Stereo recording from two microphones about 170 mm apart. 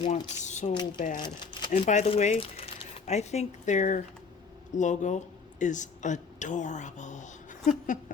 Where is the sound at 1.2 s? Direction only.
30° left (ahead or behind).